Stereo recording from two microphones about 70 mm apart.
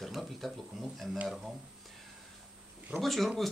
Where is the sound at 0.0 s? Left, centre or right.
Centre.